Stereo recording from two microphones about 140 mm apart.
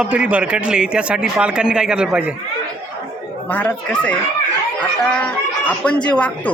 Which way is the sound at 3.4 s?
10° left (ahead or behind).